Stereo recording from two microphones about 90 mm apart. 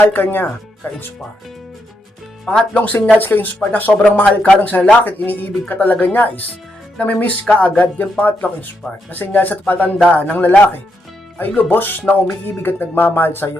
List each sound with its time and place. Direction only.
0.0 s speech: 20° left (ahead or behind)
2.4 s speech: 5° left (ahead or behind)
2.7 s a man's voice: 15° left (ahead or behind)